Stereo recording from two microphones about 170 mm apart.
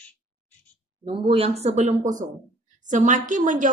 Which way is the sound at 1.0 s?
35° right (ahead or behind).